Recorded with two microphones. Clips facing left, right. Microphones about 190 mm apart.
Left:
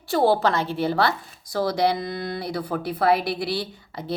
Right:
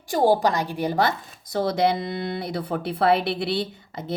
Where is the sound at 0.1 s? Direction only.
15° right (ahead or behind).